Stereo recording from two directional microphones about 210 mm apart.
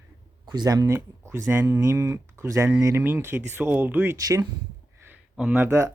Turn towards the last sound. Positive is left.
turn(degrees=-10)  # may be behind; listen again after turning